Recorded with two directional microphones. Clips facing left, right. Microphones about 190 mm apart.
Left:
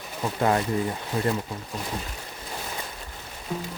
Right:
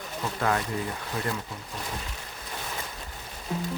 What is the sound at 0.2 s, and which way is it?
Speech, 25° left (ahead or behind).